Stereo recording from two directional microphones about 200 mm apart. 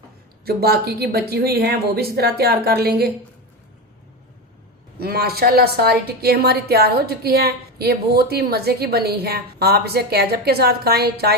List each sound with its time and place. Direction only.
0.4 s a woman's voice: 50° right (ahead or behind)
4.9 s a woman's voice: 50° right (ahead or behind)